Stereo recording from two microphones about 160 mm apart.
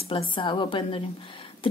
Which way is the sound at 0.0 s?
30° left (ahead or behind).